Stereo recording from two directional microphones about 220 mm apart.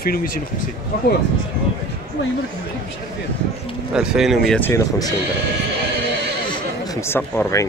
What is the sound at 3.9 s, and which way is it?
Speech, 5° right (ahead or behind).